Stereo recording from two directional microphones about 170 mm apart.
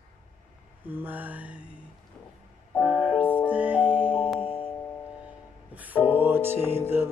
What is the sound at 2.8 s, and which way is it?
Music, 10° right (ahead or behind).